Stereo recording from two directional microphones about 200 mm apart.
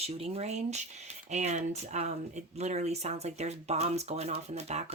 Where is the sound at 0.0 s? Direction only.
30° right (ahead or behind).